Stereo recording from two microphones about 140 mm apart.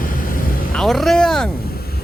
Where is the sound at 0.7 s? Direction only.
Centre (ahead or behind).